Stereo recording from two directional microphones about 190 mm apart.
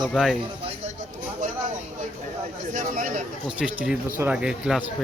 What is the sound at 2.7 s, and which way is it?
Speech, 45° right (ahead or behind).